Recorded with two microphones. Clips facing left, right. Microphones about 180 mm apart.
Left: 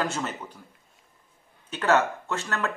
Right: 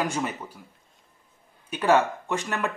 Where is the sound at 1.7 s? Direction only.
10° right (ahead or behind).